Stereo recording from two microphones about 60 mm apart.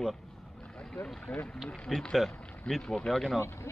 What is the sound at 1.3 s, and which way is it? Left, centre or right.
Speech, left.